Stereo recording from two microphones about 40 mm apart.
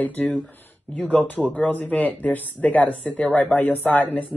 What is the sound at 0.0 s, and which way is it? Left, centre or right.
Speech, left.